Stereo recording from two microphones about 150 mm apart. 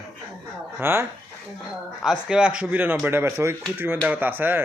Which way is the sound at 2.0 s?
5° right (ahead or behind).